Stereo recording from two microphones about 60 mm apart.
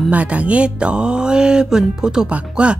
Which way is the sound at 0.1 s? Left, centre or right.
Right.